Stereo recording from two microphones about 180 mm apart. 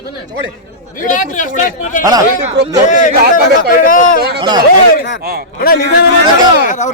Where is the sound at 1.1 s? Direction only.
45° left (ahead or behind).